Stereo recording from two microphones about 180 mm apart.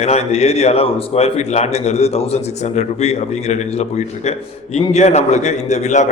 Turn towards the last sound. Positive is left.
turn(degrees=40)  # may be behind; listen again after turning